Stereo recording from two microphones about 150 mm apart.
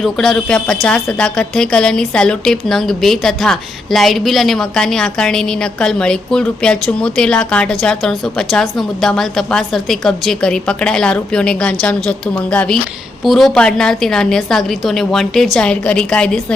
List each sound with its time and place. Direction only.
0.0 s speech: 5° left (ahead or behind)